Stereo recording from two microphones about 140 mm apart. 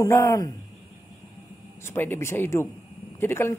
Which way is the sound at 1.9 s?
15° left (ahead or behind).